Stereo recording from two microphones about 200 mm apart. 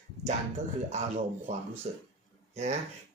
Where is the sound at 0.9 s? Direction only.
35° right (ahead or behind).